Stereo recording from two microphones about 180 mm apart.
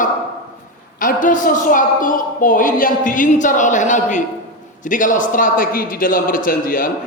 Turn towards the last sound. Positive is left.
turn(degrees=50)  # may be behind; listen again after turning